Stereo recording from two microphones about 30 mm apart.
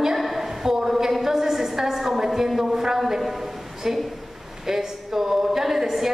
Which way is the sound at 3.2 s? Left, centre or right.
Centre.